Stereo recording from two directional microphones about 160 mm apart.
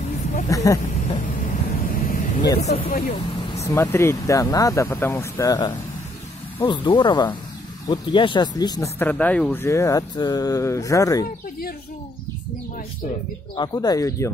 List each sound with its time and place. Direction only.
0.5 s speech: 20° left (ahead or behind)
1.4 s vehicle: 55° left (ahead or behind)
2.6 s speech: 45° left (ahead or behind)
2.9 s speech: 65° left (ahead or behind)
3.5 s speech: 15° left (ahead or behind)
13.6 s speech: 25° left (ahead or behind)